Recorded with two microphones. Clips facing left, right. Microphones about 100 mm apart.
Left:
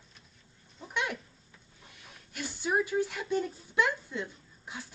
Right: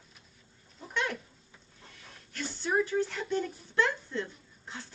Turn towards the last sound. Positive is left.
turn(degrees=10)  # may be behind; listen again after turning